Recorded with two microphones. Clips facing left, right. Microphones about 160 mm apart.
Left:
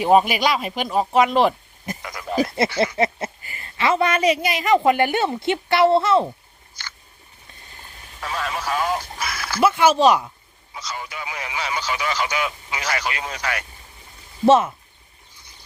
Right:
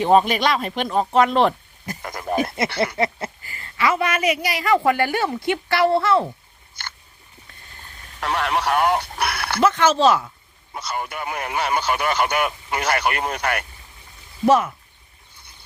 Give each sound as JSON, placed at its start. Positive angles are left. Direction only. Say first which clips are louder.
{"t": 0.0, "sound": "speech", "louder": "even", "side_deg": 10}
{"t": 2.0, "sound": "speech", "louder": "right 3 dB", "side_deg": -50}
{"t": 3.0, "sound": "a woman's voice", "louder": "left 1 dB", "side_deg": 20}
{"t": 6.8, "sound": "a sound", "louder": "right 3 dB", "side_deg": -55}
{"t": 8.2, "sound": "speech", "louder": "right 5 dB", "side_deg": -70}
{"t": 9.6, "sound": "speech", "louder": "left 1 dB", "side_deg": 10}
{"t": 10.8, "sound": "speech", "louder": "right 4 dB", "side_deg": -55}
{"t": 14.4, "sound": "a woman's voice", "louder": "left 2 dB", "side_deg": 25}